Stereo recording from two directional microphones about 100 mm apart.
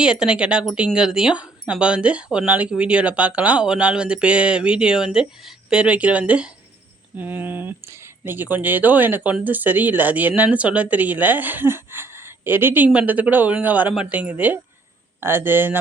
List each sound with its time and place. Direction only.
0.0 s speech: 10° right (ahead or behind)